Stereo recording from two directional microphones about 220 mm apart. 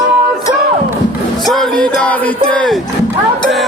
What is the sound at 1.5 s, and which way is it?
Speech, centre (ahead or behind).